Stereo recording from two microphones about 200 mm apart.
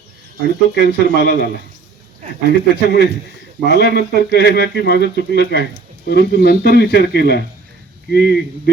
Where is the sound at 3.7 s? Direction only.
55° left (ahead or behind).